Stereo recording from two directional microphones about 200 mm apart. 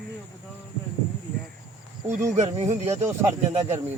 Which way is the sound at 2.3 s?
35° right (ahead or behind).